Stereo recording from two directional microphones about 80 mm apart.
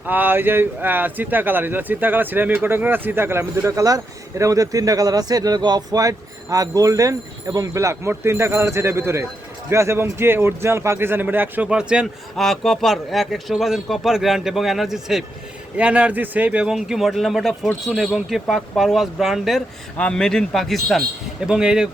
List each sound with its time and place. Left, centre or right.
0.0 s a man's voice: right
11.7 s speech: centre
12.4 s a man's voice: centre
15.7 s speech: centre
16.7 s a man's voice: centre
20.0 s speech: centre
21.4 s speech: centre